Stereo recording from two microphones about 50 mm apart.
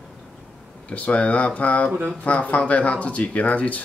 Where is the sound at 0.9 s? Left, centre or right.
Left.